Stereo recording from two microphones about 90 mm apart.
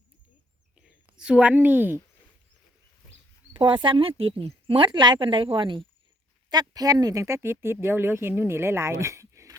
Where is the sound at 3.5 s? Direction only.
60° right (ahead or behind); by 4.8 s 85° right.